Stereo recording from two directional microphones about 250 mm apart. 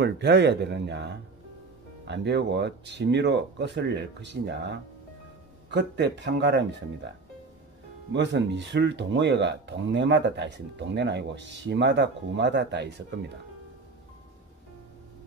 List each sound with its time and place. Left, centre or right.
0.0 s speech: right
8.1 s speech: right